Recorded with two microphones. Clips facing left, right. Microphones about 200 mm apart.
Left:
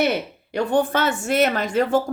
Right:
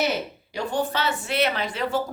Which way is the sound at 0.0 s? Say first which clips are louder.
Left 4 dB; 60° left (ahead or behind).